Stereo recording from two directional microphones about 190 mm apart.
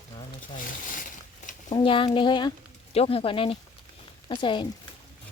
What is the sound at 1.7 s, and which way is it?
Speech, 25° left (ahead or behind).